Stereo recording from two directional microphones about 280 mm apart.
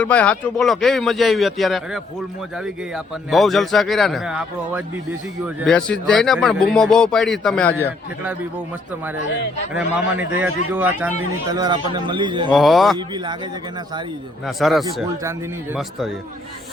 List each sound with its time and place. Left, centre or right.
0.0 s speech: centre
9.7 s a man's voice: centre
12.5 s speech: centre
14.4 s speech: centre